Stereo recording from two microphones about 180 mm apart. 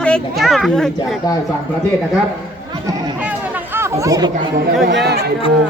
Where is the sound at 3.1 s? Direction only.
10° right (ahead or behind).